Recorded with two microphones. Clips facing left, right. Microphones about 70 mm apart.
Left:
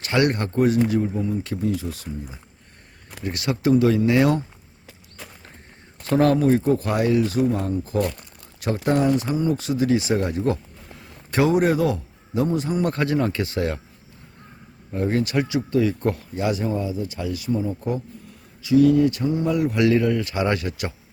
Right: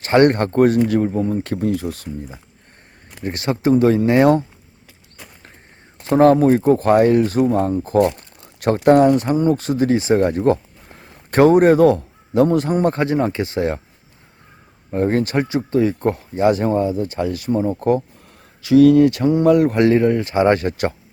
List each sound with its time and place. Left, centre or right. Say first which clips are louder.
0.0 s speech: right 7 dB; right
3.2 s speech: right 3 dB; right
6.0 s speech: right 6 dB; right
6.7 s speech: right 7 dB; right
8.6 s speech: right 8 dB; right
12.8 s speech: right 4 dB; right
14.8 s speech: right 5 dB; right
16.5 s speech: right 8 dB; right
18.6 s speech: right 5 dB; right
19.7 s speech: right 4 dB; right